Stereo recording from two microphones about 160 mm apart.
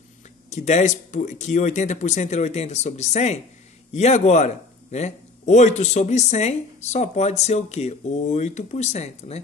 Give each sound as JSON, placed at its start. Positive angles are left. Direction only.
{"t": 0.5, "sound": "a man's voice", "side_deg": 45}